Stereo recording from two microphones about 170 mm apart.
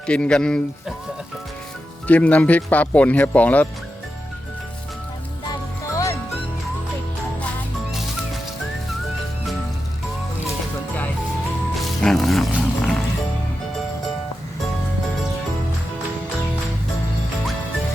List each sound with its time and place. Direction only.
0.1 s speech: 5° left (ahead or behind)
2.0 s speech: 10° left (ahead or behind)
5.5 s music: 20° left (ahead or behind)
11.8 s music: centre (ahead or behind)